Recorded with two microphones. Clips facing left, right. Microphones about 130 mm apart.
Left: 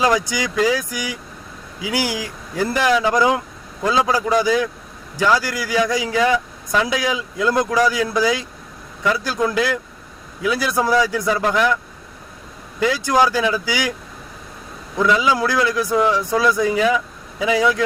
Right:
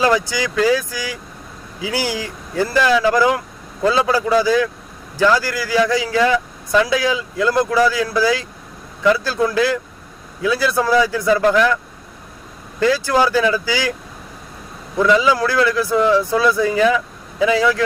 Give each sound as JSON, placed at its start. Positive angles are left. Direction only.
{"t": 0.0, "sound": "speech", "side_deg": 15}
{"t": 12.8, "sound": "speech", "side_deg": 15}
{"t": 15.0, "sound": "speech", "side_deg": 10}